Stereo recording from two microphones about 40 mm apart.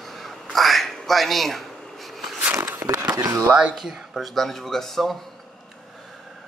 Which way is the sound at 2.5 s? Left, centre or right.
Right.